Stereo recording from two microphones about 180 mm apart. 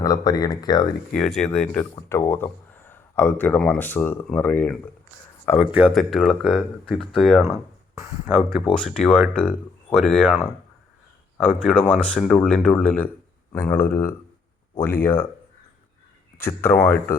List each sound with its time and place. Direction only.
0.0 s speech: 20° left (ahead or behind)
1.6 s speech: 5° left (ahead or behind)
5.7 s speech: 10° right (ahead or behind)
7.9 s speech: 15° right (ahead or behind)
8.4 s speech: centre (ahead or behind)
16.5 s speech: 15° left (ahead or behind)